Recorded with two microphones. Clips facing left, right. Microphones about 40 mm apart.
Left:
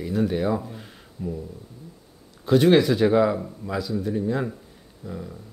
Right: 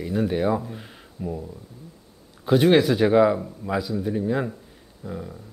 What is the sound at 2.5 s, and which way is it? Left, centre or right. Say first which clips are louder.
Speech: even; centre.